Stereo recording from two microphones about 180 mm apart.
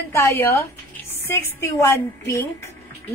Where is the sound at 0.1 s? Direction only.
15° left (ahead or behind).